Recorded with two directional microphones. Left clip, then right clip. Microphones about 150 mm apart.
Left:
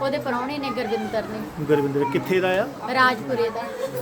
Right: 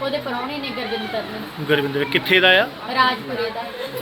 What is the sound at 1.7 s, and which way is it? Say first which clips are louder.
Speech: right 2 dB; 10° left (ahead or behind).